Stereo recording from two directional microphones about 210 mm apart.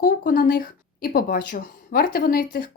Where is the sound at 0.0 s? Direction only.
40° left (ahead or behind).